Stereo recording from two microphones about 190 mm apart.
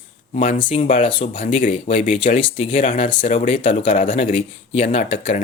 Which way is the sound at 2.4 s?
25° left (ahead or behind).